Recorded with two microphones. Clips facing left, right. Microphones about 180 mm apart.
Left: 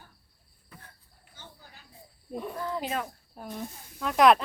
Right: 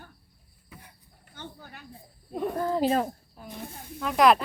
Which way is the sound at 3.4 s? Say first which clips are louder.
Left 8 dB; 50° left (ahead or behind).